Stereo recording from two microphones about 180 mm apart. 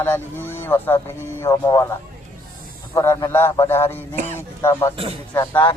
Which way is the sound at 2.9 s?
15° left (ahead or behind).